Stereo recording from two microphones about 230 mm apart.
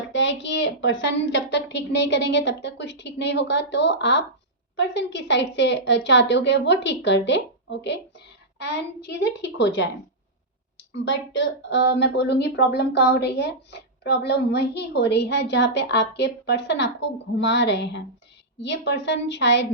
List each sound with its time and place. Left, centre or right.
0.1 s a woman's voice: left
10.9 s a woman's voice: left